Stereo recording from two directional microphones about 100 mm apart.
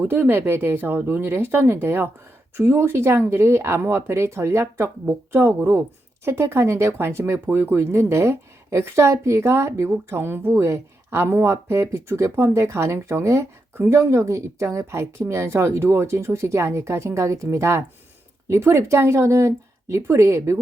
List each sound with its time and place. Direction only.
0.0 s speech: 20° right (ahead or behind)